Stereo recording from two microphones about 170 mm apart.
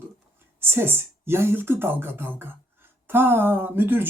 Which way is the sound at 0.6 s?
15° right (ahead or behind).